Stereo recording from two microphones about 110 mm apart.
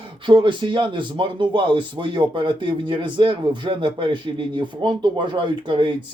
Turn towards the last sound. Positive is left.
turn(degrees=-50)  # may be behind; listen again after turning